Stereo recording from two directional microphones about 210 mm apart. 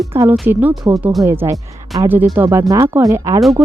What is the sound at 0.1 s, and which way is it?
A woman's voice, 10° right (ahead or behind).